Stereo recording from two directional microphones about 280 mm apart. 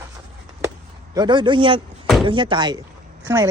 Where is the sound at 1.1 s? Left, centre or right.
Centre.